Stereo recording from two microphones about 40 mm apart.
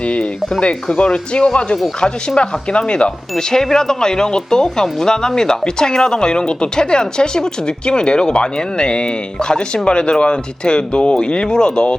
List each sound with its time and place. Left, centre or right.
1.1 s speech: left
3.3 s speech: centre